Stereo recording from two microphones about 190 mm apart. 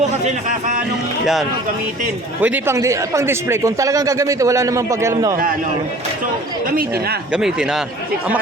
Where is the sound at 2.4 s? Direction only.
15° right (ahead or behind).